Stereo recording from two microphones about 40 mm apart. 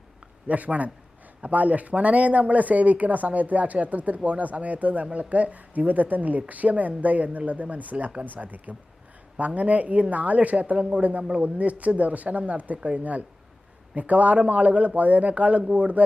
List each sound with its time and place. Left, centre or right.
0.4 s speech: right